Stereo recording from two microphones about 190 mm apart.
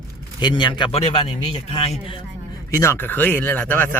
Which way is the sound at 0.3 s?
25° left (ahead or behind).